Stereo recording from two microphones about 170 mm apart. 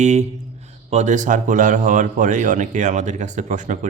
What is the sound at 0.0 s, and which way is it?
Speech, 40° right (ahead or behind).